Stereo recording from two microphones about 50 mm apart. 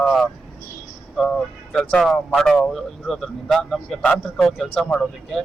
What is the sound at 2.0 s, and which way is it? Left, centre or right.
A man's voice, centre.